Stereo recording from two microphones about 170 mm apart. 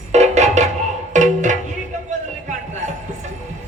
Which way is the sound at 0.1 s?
45° right (ahead or behind).